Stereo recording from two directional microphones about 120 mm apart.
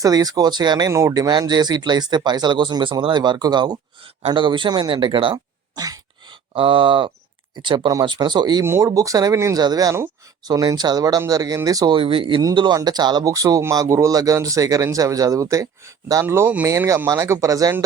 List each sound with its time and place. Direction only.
0.0 s speech: 30° right (ahead or behind)
0.9 s speech: 25° right (ahead or behind)
6.5 s speech: 45° right (ahead or behind)
8.6 s speech: 25° right (ahead or behind)
11.9 s speech: 50° right (ahead or behind)
12.4 s speech: 35° right (ahead or behind)
16.2 s speech: 15° right (ahead or behind)